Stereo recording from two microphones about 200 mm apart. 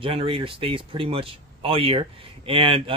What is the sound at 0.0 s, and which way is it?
Speech, 25° right (ahead or behind).